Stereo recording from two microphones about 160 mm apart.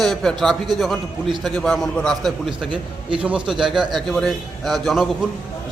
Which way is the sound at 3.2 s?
5° right (ahead or behind).